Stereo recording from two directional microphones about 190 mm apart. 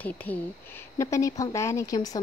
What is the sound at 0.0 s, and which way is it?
A woman's voice, 10° left (ahead or behind).